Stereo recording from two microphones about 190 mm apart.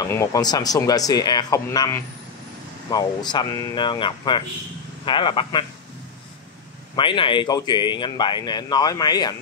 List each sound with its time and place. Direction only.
0.0 s speech: 15° left (ahead or behind)
7.0 s speech: 25° left (ahead or behind)